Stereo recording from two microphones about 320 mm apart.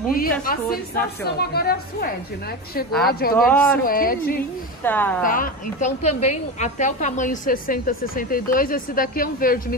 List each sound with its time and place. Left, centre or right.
0.1 s a woman's voice: left
3.4 s speech: centre
3.8 s a woman's voice: left
4.8 s speech: centre
5.2 s a woman's voice: left